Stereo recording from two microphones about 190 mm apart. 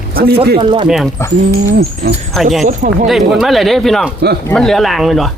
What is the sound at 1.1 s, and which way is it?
Speech, 15° left (ahead or behind).